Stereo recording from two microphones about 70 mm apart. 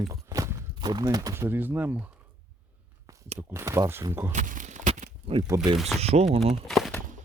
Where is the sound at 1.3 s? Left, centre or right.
Right.